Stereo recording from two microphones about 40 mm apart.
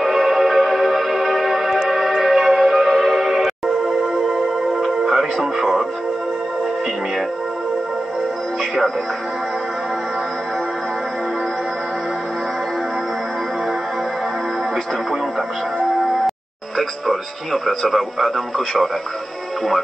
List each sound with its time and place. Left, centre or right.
0.0 s music: centre
15.9 s music: centre